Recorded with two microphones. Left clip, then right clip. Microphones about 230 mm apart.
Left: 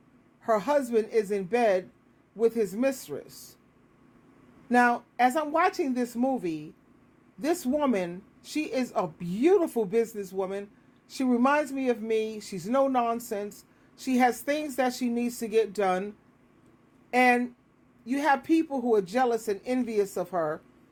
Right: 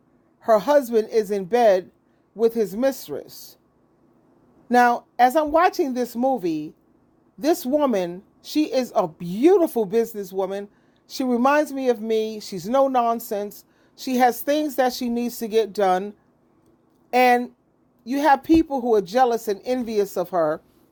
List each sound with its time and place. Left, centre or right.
0.4 s speech: right
4.7 s speech: right